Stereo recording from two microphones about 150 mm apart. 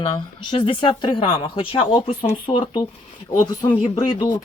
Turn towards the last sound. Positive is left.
turn(degrees=30)  # may be behind; listen again after turning